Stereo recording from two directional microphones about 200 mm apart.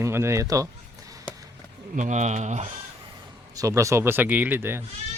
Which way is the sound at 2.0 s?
35° right (ahead or behind).